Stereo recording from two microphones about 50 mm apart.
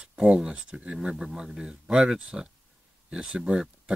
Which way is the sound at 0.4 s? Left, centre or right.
Centre.